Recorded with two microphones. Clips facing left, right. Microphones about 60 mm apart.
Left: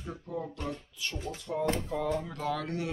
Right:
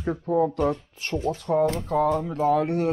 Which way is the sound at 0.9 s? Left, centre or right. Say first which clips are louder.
Right 11 dB; right.